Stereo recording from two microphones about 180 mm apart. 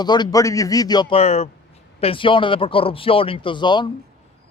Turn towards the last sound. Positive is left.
turn(degrees=25)  # may be behind; listen again after turning